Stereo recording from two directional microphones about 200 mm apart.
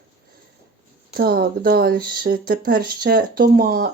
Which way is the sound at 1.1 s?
50° right (ahead or behind).